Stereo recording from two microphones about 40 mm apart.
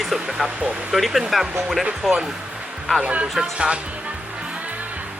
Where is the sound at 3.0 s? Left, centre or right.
Right.